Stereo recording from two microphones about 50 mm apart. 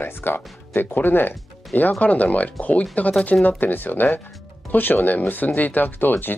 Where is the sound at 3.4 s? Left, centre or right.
Left.